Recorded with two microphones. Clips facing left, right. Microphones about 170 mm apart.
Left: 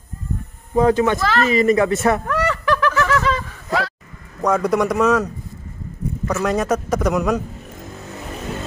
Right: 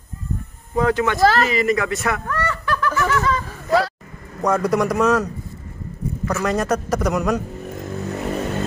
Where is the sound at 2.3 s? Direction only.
85° left.